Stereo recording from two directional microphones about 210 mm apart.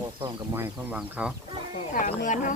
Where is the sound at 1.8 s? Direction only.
40° left (ahead or behind).